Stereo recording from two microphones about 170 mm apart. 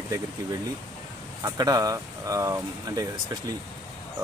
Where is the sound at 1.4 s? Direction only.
20° right (ahead or behind).